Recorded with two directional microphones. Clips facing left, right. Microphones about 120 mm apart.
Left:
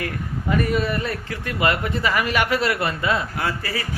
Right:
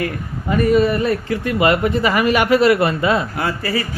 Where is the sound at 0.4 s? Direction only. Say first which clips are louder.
Right 7 dB; centre (ahead or behind).